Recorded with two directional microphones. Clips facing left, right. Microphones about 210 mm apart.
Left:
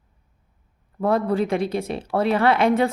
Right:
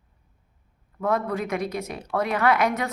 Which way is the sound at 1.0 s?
30° left (ahead or behind).